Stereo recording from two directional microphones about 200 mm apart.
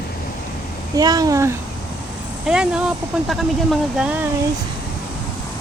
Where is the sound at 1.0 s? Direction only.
20° right (ahead or behind).